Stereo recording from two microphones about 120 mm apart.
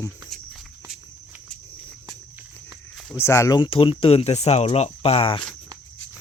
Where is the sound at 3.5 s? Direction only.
45° left (ahead or behind).